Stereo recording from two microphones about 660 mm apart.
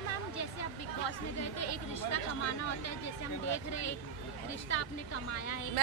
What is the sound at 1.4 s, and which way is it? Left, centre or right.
Speech, left.